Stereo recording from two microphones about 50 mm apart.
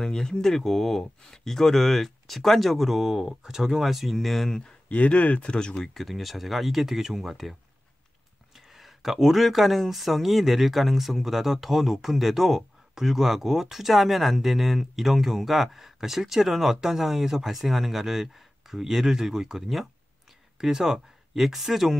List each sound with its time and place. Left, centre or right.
0.0 s speech: centre
4.8 s speech: left
5.8 s speech: centre
8.5 s speech: centre